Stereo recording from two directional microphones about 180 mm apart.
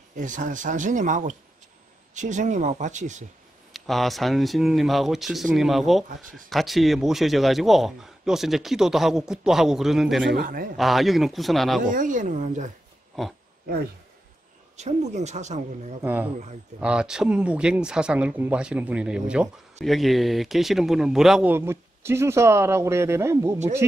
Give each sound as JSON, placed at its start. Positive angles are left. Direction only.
{"t": 0.1, "sound": "speech", "side_deg": -45}
{"t": 3.7, "sound": "a man's voice", "side_deg": 0}
{"t": 10.3, "sound": "a man's voice", "side_deg": -55}
{"t": 10.8, "sound": "a man's voice", "side_deg": 0}
{"t": 11.8, "sound": "speech", "side_deg": -45}
{"t": 13.1, "sound": "speech", "side_deg": 0}
{"t": 14.8, "sound": "speech", "side_deg": -40}
{"t": 16.0, "sound": "a man's voice", "side_deg": -10}